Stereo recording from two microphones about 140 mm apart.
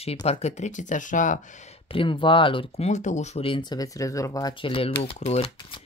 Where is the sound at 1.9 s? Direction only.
35° left (ahead or behind).